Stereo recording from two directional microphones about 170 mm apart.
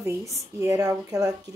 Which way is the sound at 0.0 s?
15° right (ahead or behind).